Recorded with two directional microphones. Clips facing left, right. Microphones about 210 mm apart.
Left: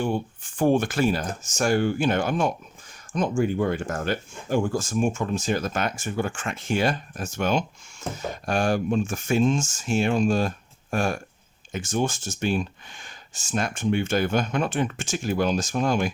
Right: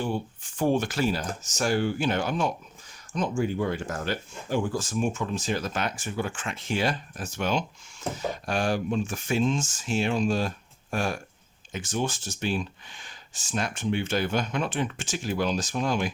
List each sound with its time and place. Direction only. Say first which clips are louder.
0.0 s speech: left 3 dB; 55° left (ahead or behind)